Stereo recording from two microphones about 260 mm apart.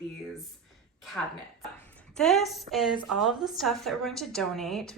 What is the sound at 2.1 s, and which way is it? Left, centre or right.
A woman's voice, centre.